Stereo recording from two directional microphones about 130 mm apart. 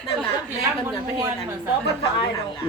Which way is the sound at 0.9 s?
30° right (ahead or behind).